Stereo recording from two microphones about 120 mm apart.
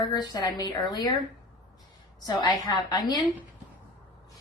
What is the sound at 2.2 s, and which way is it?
A woman's voice, 35° left (ahead or behind).